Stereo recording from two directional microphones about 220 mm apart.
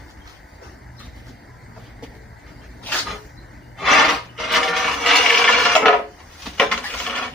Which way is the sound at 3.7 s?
Centre (ahead or behind).